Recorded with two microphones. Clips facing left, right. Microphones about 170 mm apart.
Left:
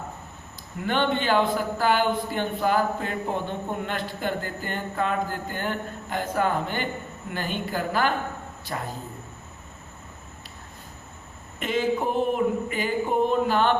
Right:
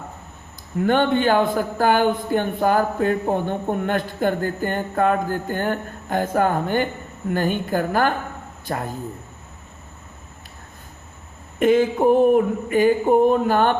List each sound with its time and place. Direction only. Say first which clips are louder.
0.9 s a man's voice: right 6 dB; 50° right (ahead or behind)
11.6 s a man's voice: right 9 dB; 50° right (ahead or behind)